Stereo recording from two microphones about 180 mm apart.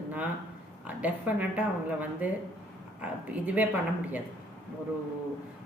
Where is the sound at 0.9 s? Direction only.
10° right (ahead or behind).